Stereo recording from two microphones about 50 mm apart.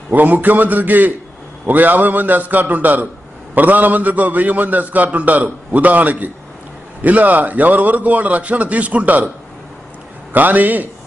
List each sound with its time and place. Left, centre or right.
0.1 s a man's voice: right
10.3 s a man's voice: right